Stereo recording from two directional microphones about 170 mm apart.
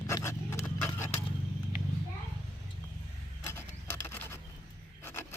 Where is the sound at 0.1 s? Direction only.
15° left (ahead or behind).